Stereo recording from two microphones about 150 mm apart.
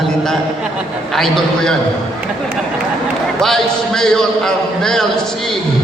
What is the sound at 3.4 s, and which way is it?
A man's voice, 5° left (ahead or behind).